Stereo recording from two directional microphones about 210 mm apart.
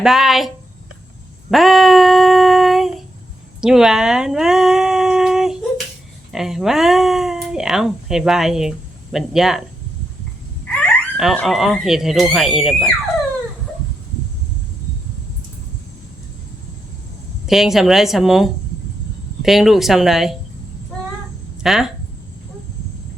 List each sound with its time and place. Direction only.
0.0 s a woman's voice: centre (ahead or behind)
1.5 s female singing: centre (ahead or behind)
3.6 s humming: centre (ahead or behind)
6.3 s a woman's voice: centre (ahead or behind)
10.8 s speech: 5° left (ahead or behind)
17.4 s a woman's voice: centre (ahead or behind)
21.6 s speech: centre (ahead or behind)